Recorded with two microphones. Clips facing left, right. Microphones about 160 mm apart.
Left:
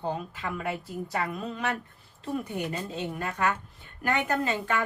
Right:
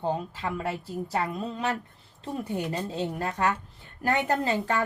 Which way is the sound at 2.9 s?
35° right (ahead or behind).